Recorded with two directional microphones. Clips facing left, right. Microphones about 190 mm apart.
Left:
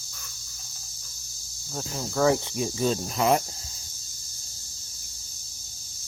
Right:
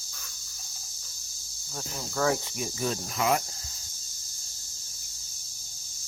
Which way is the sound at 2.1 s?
15° left (ahead or behind).